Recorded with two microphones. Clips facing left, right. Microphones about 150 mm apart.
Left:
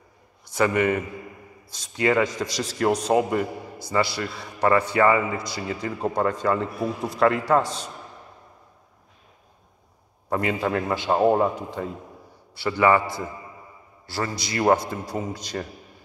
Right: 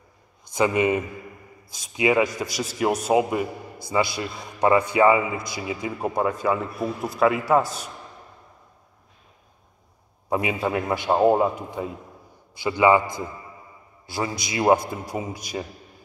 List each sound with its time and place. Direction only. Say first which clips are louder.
0.5 s a man's voice: right 1 dB; 15° right (ahead or behind)
10.3 s a man's voice: even; 10° right (ahead or behind)